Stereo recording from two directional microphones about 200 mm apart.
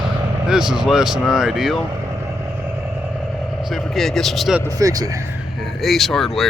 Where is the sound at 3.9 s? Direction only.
Centre (ahead or behind).